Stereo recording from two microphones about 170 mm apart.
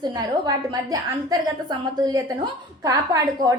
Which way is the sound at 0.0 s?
20° right (ahead or behind).